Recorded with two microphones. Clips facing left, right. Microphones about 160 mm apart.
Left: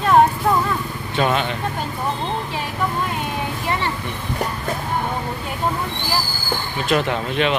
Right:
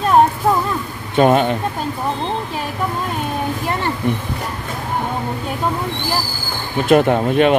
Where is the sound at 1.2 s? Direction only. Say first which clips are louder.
Right 7 dB; 50° right (ahead or behind).